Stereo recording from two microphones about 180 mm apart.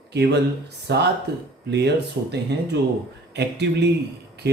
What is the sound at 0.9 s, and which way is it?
Speech, 70° right (ahead or behind).